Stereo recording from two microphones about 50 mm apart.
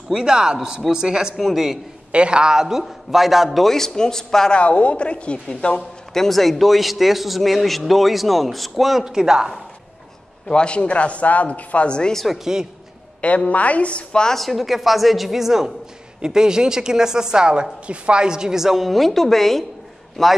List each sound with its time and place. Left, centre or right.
0.1 s a woman's voice: centre
1.3 s a man's voice: centre
2.1 s a woman's voice: right; by 4.6 s centre
4.6 s speech: left
5.8 s a man's voice: centre
9.0 s a woman's voice: centre
10.5 s speech: centre
12.3 s a woman's voice: centre
13.5 s speech: left
14.3 s a man's voice: centre